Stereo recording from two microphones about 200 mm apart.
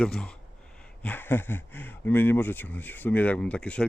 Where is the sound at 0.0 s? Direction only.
5° left (ahead or behind).